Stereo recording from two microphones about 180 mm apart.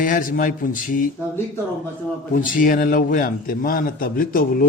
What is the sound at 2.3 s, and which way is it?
A man's voice, 50° left (ahead or behind).